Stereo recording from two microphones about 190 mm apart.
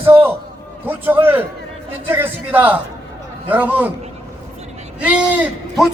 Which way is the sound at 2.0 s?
10° right (ahead or behind).